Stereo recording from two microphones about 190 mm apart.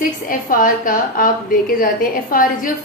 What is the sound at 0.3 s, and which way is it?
A woman's voice, 45° left (ahead or behind).